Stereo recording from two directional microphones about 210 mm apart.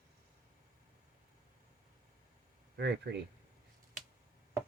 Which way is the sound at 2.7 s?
55° right (ahead or behind).